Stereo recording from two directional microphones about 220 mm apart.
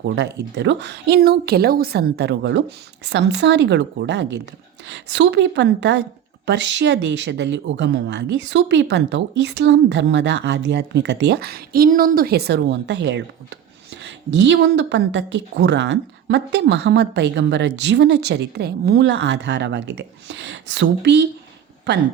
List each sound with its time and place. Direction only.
0.0 s a woman's voice: 50° right (ahead or behind)